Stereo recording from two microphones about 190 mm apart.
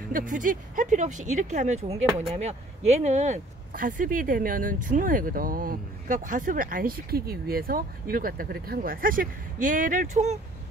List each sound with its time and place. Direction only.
0.1 s speech: 45° right (ahead or behind)